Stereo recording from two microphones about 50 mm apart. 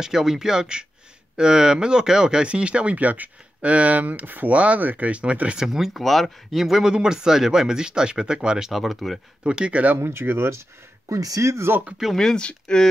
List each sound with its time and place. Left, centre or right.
0.0 s speech: centre
5.6 s speech: centre
8.7 s speech: centre
9.4 s speech: right
10.0 s speech: right
11.1 s speech: right
12.2 s speech: centre